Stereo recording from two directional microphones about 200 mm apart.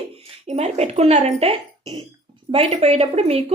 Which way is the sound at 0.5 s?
30° right (ahead or behind).